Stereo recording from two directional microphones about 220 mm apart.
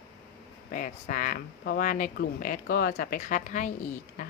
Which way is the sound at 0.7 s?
40° left (ahead or behind).